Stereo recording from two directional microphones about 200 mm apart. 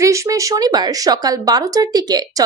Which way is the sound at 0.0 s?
15° right (ahead or behind).